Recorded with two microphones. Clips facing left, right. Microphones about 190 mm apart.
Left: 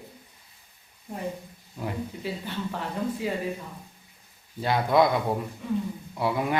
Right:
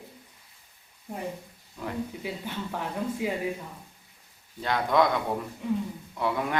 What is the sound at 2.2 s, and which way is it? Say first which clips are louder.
Speech: left 2 dB; 15° right (ahead or behind).